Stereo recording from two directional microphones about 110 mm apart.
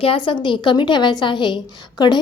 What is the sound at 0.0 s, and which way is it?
A woman's voice, 50° left (ahead or behind).